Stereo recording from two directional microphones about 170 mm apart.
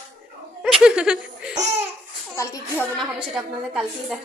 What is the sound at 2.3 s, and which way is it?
Speech, 15° left (ahead or behind).